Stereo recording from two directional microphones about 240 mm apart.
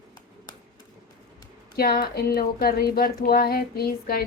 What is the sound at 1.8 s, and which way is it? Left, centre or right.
Speech, left.